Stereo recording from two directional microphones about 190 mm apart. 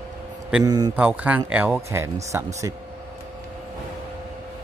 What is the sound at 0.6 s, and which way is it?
Speech, 20° right (ahead or behind).